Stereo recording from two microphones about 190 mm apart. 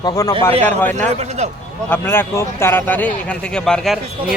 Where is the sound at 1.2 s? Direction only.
35° right (ahead or behind).